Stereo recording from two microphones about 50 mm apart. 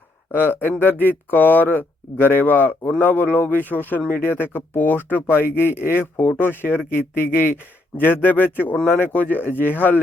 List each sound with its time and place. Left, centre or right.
0.3 s speech: left
5.2 s speech: left